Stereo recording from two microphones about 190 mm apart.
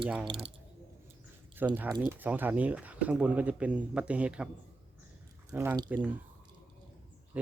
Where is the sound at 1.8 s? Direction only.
20° right (ahead or behind).